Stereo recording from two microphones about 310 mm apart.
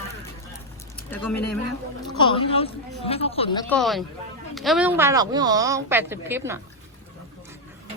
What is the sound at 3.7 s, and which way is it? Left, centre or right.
A woman's voice, centre.